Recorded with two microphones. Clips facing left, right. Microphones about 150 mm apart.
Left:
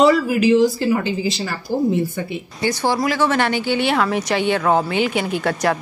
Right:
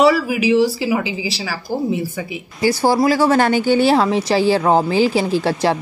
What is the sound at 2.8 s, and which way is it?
A woman's voice, 35° right (ahead or behind).